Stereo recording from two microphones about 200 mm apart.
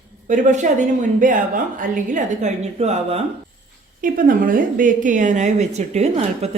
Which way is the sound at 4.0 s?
45° right (ahead or behind).